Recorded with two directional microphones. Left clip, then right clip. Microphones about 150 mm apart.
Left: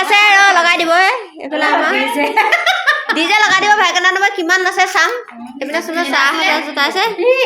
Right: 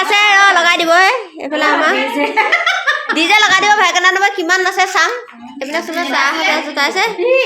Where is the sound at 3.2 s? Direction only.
10° right (ahead or behind).